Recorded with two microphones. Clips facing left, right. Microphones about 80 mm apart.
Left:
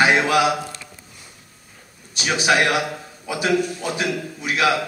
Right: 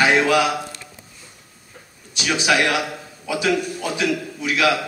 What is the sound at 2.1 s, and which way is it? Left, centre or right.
A man's voice, left.